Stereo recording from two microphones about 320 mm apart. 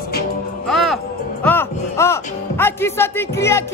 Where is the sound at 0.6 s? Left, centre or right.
Centre.